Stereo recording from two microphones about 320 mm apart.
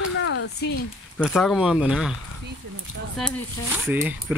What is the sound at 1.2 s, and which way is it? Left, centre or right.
Speech, centre.